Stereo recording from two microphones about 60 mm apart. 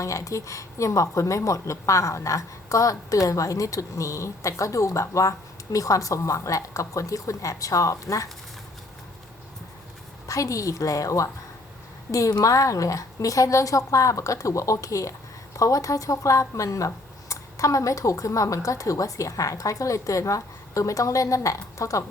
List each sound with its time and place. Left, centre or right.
0.0 s a woman's voice: left
10.2 s a woman's voice: left